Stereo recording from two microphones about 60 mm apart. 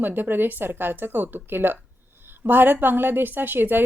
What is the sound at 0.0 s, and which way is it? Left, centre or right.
A woman's voice, right.